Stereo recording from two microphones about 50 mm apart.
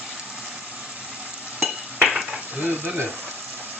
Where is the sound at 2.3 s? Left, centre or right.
Right.